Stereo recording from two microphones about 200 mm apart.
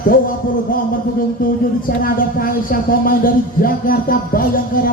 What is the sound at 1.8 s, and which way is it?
Speech, 45° left (ahead or behind).